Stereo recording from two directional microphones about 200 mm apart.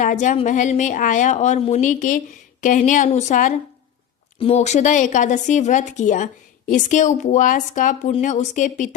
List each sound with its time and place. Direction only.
0.0 s speech: 40° left (ahead or behind)